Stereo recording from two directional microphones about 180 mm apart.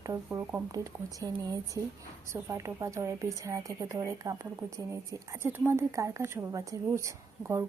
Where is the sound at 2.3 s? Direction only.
15° right (ahead or behind).